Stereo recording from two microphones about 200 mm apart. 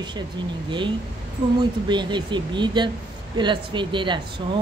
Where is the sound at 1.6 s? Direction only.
20° right (ahead or behind).